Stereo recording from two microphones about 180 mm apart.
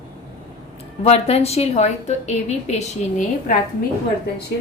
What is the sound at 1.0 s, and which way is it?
A woman's voice, 35° left (ahead or behind).